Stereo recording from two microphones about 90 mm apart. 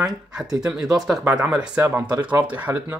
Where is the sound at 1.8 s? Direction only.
25° right (ahead or behind).